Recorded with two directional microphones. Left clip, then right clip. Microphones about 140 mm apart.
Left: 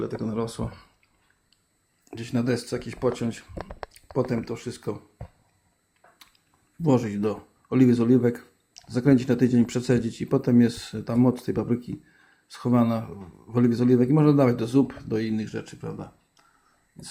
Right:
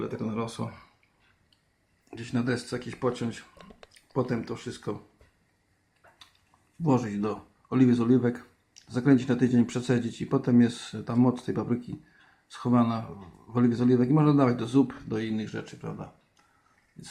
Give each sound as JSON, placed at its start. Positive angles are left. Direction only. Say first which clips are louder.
{"t": 0.0, "sound": "speech", "louder": "left 3 dB", "side_deg": 45}
{"t": 2.0, "sound": "speech", "louder": "left 3 dB", "side_deg": 35}
{"t": 6.8, "sound": "speech", "louder": "left 4 dB", "side_deg": 25}